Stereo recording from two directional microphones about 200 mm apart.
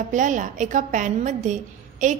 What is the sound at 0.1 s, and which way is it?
A woman's voice, 40° right (ahead or behind).